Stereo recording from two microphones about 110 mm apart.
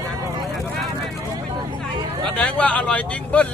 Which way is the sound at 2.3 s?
10° left (ahead or behind).